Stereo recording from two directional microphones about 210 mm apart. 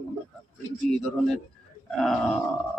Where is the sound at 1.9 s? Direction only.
Centre (ahead or behind).